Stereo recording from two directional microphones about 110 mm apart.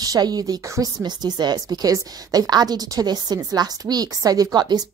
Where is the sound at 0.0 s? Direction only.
35° right (ahead or behind).